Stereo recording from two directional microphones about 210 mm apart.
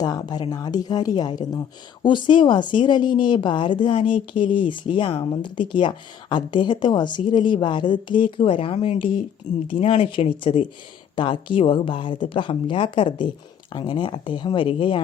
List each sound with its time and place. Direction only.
0.0 s a woman's voice: 20° left (ahead or behind)